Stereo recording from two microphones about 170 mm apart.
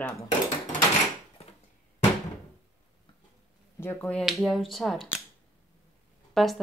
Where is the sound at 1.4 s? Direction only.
35° left (ahead or behind).